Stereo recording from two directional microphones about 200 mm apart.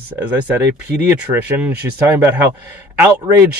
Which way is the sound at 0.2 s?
10° right (ahead or behind).